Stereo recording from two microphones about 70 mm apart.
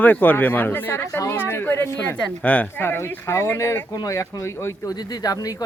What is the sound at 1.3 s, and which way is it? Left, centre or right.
Speech, left.